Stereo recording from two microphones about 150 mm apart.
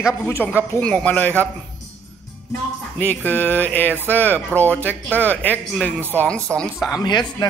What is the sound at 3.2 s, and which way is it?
Speech, 10° left (ahead or behind).